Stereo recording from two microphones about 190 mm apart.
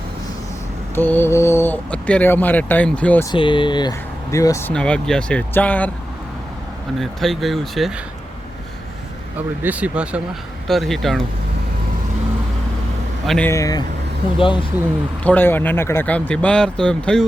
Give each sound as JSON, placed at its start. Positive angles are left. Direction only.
{"t": 0.9, "sound": "speech", "side_deg": 10}
{"t": 3.3, "sound": "speech", "side_deg": 25}
{"t": 4.7, "sound": "speech", "side_deg": 5}
{"t": 7.0, "sound": "speech", "side_deg": 0}
{"t": 9.6, "sound": "speech", "side_deg": -5}
{"t": 13.2, "sound": "speech", "side_deg": 5}
{"t": 13.5, "sound": "speech", "side_deg": 15}
{"t": 15.2, "sound": "speech", "side_deg": 10}